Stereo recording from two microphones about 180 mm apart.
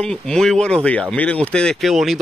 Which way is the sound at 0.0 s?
5° left (ahead or behind).